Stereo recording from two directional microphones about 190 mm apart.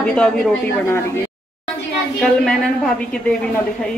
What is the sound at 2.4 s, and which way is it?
A woman's voice, 5° left (ahead or behind).